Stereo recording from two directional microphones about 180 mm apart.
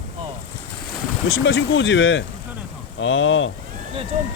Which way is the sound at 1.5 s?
90° left.